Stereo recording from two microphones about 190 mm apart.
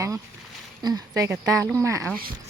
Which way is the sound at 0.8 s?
20° right (ahead or behind).